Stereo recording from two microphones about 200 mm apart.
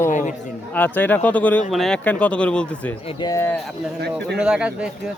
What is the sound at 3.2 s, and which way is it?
Speech, 15° left (ahead or behind).